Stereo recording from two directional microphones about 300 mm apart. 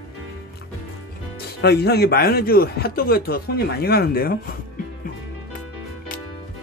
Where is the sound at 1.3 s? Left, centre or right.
Left.